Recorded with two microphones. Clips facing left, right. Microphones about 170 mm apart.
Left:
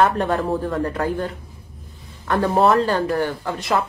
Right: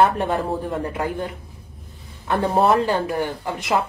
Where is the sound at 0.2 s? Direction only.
20° right (ahead or behind).